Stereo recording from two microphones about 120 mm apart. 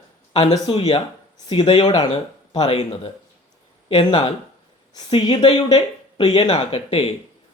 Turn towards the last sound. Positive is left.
turn(degrees=50)  # may be behind; listen again after turning